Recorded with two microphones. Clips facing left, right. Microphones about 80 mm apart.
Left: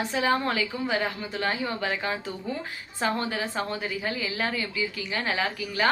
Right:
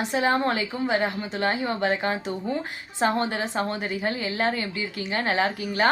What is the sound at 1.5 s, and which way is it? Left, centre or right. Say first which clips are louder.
Speech: right 4 dB; right.